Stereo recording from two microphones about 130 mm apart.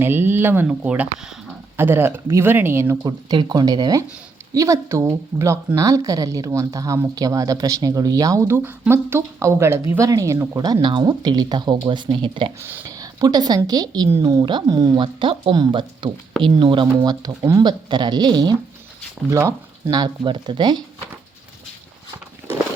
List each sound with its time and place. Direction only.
0.0 s speech: 15° right (ahead or behind)
3.1 s a woman's voice: 30° right (ahead or behind)
12.6 s speech: 15° right (ahead or behind)
13.0 s a sound: 30° right (ahead or behind)
13.7 s a woman's voice: 30° right (ahead or behind)
15.0 s speech: 40° right (ahead or behind)